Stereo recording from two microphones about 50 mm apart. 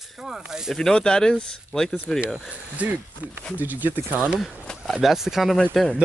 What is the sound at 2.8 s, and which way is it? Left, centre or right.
Speech, right.